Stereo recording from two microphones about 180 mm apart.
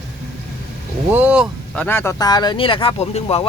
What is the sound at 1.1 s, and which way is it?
Speech, 5° right (ahead or behind).